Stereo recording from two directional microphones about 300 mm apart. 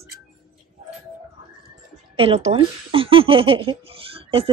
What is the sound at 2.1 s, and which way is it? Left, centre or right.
Speech, centre.